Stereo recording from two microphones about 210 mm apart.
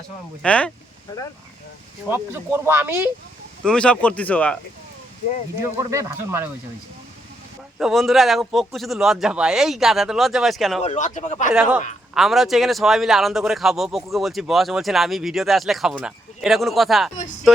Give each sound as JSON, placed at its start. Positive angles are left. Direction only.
{"t": 0.4, "sound": "speech", "side_deg": 5}
{"t": 2.0, "sound": "speech", "side_deg": -10}
{"t": 3.6, "sound": "speech", "side_deg": 5}
{"t": 5.7, "sound": "speech", "side_deg": -15}
{"t": 7.8, "sound": "speech", "side_deg": 0}
{"t": 10.8, "sound": "speech", "side_deg": 35}
{"t": 11.5, "sound": "speech", "side_deg": -5}